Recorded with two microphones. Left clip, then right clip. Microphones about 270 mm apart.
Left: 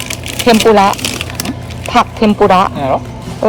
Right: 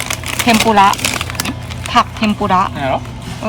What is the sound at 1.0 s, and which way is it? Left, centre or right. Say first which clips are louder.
Music: right 1 dB; centre.